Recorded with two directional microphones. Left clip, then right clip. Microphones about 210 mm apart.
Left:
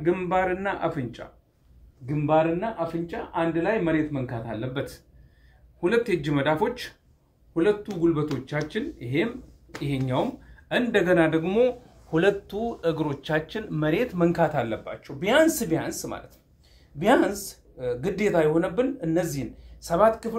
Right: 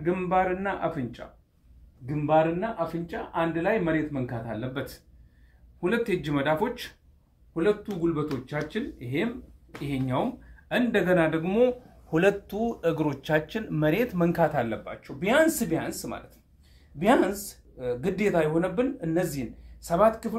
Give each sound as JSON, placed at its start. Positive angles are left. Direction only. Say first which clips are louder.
{"t": 0.0, "sound": "speech", "louder": "left 1 dB", "side_deg": 0}
{"t": 12.1, "sound": "speech", "louder": "left 1 dB", "side_deg": -25}